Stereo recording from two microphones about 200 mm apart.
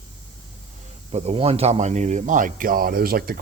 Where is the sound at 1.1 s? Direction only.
30° right (ahead or behind).